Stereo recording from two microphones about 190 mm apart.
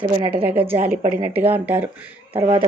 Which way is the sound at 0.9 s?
50° right (ahead or behind).